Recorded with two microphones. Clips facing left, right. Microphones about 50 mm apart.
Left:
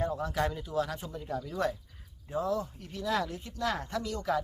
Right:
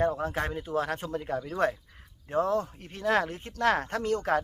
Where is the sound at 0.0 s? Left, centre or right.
Right.